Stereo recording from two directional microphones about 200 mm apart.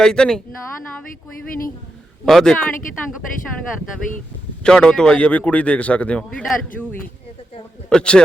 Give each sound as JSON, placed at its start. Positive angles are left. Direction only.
{"t": 0.0, "sound": "a man's voice", "side_deg": 5}
{"t": 2.2, "sound": "a man's voice", "side_deg": 5}
{"t": 4.6, "sound": "a man's voice", "side_deg": 5}
{"t": 7.9, "sound": "a man's voice", "side_deg": 5}